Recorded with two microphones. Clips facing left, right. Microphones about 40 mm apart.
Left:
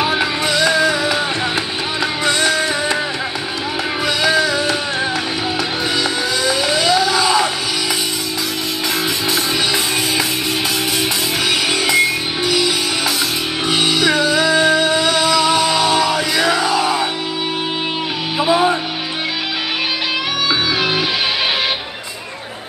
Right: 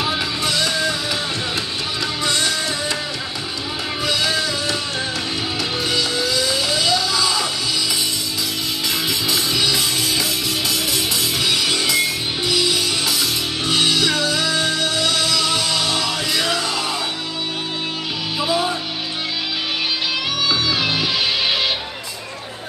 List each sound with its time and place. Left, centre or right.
0.0 s music: left
0.6 s music: centre
2.2 s music: left
4.0 s music: centre
6.4 s music: centre
9.3 s music: left
11.7 s music: left
12.4 s music: centre
18.4 s music: left